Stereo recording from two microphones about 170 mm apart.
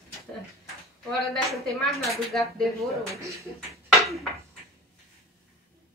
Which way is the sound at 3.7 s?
Centre (ahead or behind).